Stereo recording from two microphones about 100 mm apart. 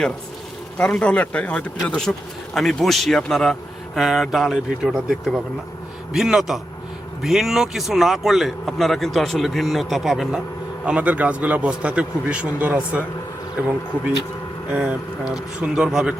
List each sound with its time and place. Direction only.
0.8 s a man's voice: 10° left (ahead or behind); by 16.1 s 5° right (ahead or behind)